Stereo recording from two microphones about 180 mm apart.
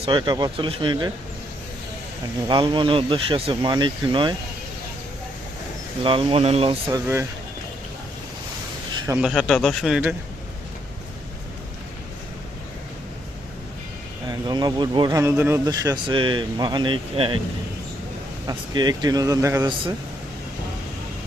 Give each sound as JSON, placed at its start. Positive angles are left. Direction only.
{"t": 0.0, "sound": "speech", "side_deg": -25}
{"t": 2.5, "sound": "speech", "side_deg": -25}
{"t": 6.0, "sound": "speech", "side_deg": -30}
{"t": 9.2, "sound": "speech", "side_deg": 0}
{"t": 14.3, "sound": "speech", "side_deg": -25}
{"t": 15.2, "sound": "speech", "side_deg": -10}
{"t": 18.4, "sound": "speech", "side_deg": -25}